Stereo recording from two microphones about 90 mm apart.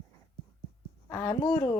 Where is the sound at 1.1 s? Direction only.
35° left (ahead or behind).